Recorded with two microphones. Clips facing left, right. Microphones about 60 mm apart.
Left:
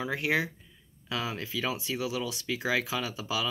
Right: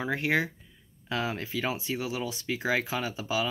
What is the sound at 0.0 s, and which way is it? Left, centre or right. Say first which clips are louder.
Speech: right 1 dB; right.